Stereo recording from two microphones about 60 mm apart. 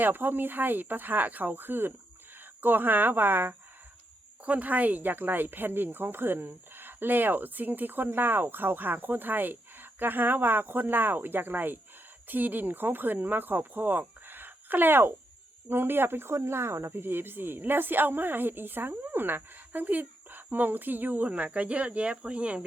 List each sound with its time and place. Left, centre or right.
0.0 s speech: right